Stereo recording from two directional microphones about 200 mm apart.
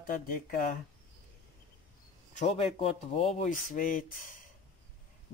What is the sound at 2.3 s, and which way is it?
Speech, 30° left (ahead or behind).